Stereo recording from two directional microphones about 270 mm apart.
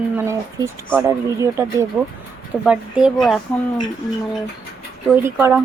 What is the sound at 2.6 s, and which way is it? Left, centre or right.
Speech, centre.